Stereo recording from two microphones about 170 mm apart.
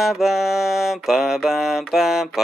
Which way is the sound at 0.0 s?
Centre (ahead or behind).